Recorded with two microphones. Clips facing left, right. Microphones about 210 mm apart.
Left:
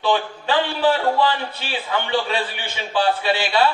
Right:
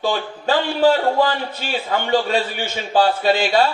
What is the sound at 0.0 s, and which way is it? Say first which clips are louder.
A man's voice: even; 45° right (ahead or behind).